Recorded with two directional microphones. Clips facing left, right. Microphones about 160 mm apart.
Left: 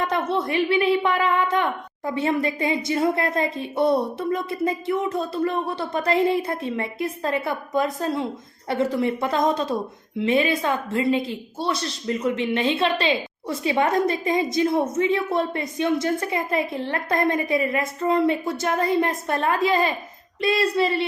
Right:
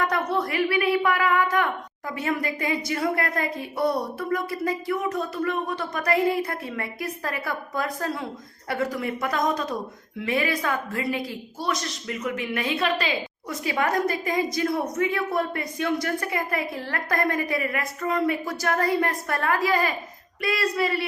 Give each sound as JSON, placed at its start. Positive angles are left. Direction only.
{"t": 0.0, "sound": "a woman's voice", "side_deg": 25}